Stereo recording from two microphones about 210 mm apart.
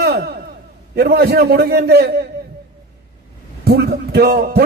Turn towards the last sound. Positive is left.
turn(degrees=-50)  # may be behind; listen again after turning